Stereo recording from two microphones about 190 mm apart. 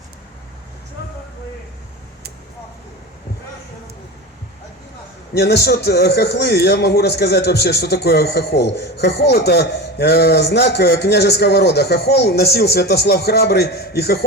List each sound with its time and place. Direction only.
5.3 s speech: 60° left (ahead or behind)